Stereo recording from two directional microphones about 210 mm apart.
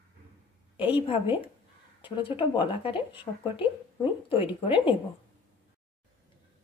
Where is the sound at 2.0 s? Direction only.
20° left (ahead or behind).